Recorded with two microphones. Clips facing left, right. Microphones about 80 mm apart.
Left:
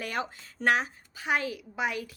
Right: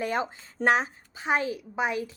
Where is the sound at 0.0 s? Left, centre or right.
Right.